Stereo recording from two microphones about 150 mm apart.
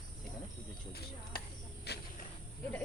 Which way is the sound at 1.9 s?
90° left.